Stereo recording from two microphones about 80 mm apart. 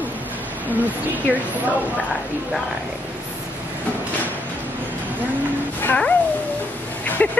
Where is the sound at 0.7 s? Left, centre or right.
Right.